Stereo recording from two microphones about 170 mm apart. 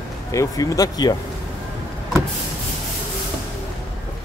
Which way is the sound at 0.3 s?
20° left (ahead or behind).